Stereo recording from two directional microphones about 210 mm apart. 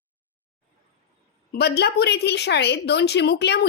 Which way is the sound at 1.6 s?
50° left (ahead or behind).